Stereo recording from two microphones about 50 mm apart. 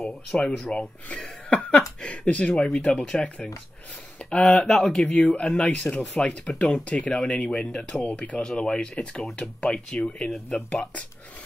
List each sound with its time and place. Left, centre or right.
0.0 s speech: centre